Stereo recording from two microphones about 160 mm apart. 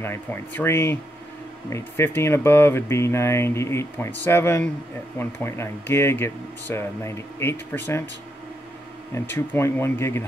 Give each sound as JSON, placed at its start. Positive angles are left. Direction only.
{"t": 0.0, "sound": "speech", "side_deg": 15}
{"t": 9.1, "sound": "speech", "side_deg": 15}